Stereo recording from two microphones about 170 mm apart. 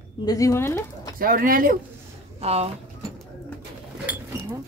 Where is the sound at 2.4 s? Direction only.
40° right (ahead or behind).